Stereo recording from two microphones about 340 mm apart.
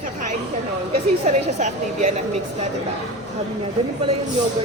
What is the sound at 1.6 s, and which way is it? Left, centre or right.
Speech, right.